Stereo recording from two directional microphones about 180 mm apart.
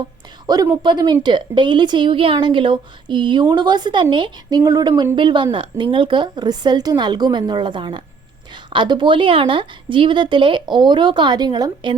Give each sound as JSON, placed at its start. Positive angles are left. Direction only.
{"t": 0.4, "sound": "a woman's voice", "side_deg": -20}